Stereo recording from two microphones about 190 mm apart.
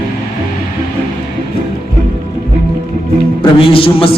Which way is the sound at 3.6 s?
30° left (ahead or behind).